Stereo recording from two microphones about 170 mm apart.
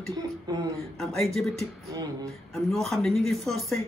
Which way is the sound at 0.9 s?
Centre (ahead or behind).